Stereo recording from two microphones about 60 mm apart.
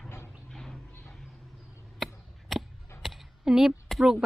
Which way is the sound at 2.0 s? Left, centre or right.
Centre.